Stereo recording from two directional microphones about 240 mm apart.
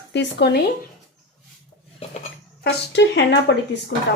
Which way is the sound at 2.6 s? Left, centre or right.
Left.